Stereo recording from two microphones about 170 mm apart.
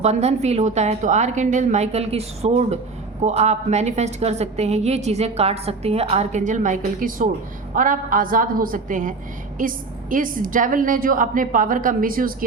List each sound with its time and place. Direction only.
0.0 s a woman's voice: 40° right (ahead or behind); by 12.3 s 55° right (ahead or behind)